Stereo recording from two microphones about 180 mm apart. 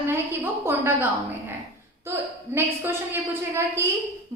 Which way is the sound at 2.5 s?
15° right (ahead or behind).